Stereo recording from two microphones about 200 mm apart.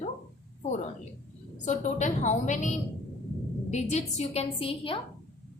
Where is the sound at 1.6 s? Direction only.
35° left (ahead or behind).